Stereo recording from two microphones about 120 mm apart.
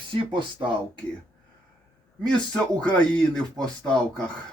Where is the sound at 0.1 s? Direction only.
40° right (ahead or behind).